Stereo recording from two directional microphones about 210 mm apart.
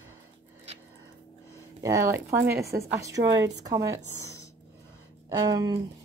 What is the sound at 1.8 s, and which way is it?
A woman's voice, 15° right (ahead or behind).